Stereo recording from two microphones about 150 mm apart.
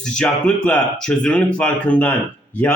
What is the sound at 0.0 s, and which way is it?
A man's voice, 5° left (ahead or behind).